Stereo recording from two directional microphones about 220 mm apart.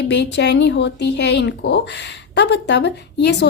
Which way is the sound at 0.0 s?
50° left (ahead or behind).